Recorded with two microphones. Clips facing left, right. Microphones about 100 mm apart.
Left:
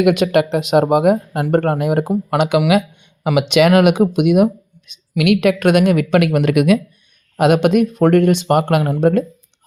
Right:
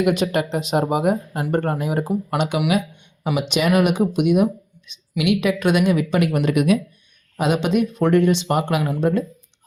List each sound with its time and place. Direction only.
0.0 s a woman's voice: 70° left (ahead or behind)
7.3 s a woman's voice: 60° left (ahead or behind)